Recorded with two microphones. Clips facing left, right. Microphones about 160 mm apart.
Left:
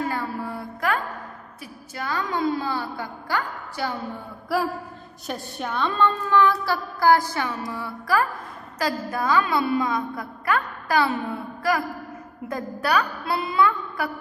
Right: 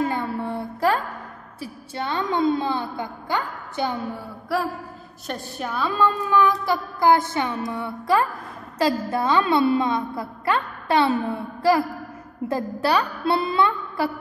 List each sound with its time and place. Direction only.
0.1 s a sound: 25° right (ahead or behind)
1.6 s a woman's voice: 25° right (ahead or behind)
4.5 s a woman's voice: centre (ahead or behind); by 11.1 s 25° right (ahead or behind)
12.4 s a woman's voice: 30° right (ahead or behind)